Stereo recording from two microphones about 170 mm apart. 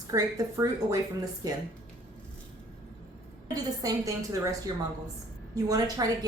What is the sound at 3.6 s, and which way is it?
Speech, 20° right (ahead or behind).